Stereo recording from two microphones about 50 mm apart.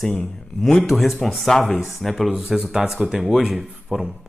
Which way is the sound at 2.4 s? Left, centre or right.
Centre.